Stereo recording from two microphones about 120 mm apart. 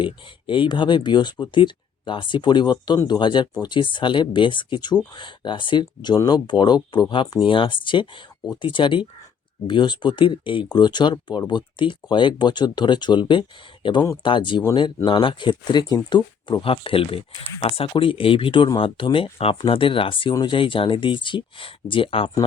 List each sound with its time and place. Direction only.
0.0 s speech: 40° left (ahead or behind)